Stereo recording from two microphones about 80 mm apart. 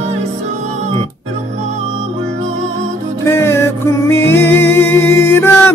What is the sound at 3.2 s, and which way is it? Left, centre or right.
Music, left.